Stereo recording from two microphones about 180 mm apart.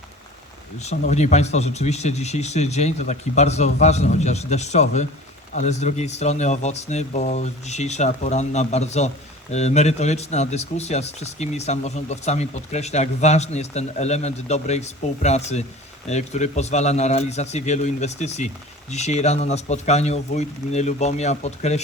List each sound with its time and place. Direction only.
0.8 s speech: 40° left (ahead or behind)